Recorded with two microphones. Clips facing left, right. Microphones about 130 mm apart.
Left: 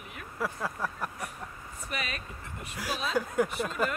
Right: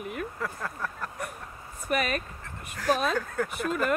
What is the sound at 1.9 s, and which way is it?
Speech, 50° right (ahead or behind).